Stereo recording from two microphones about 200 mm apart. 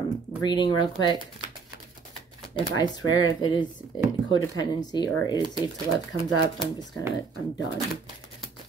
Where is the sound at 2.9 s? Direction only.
20° left (ahead or behind).